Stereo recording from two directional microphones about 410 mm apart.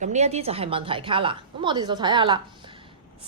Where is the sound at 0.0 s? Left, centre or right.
Centre.